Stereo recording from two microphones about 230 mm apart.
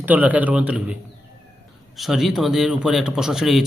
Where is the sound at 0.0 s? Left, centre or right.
Centre.